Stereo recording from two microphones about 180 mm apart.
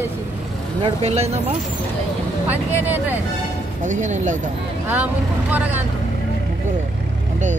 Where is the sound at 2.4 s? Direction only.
10° right (ahead or behind).